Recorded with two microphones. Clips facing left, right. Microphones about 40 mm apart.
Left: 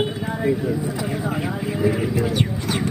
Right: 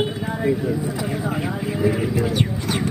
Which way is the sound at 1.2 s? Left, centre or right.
Centre.